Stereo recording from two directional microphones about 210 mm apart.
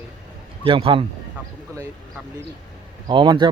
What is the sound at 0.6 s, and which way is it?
Speech, 25° right (ahead or behind).